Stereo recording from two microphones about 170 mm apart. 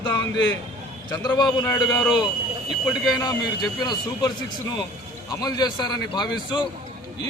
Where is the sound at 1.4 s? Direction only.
25° left (ahead or behind).